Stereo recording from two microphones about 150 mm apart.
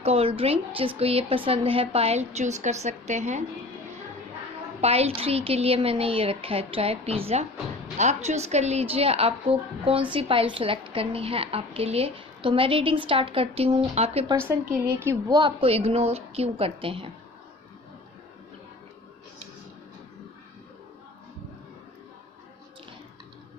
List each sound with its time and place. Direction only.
0.0 s a woman's voice: 40° right (ahead or behind)
4.8 s a woman's voice: 45° right (ahead or behind)
14.3 s a woman's voice: 15° right (ahead or behind)
14.6 s a woman's voice: 70° right (ahead or behind)
14.9 s a woman's voice: 15° right (ahead or behind)
15.3 s a woman's voice: 30° right (ahead or behind)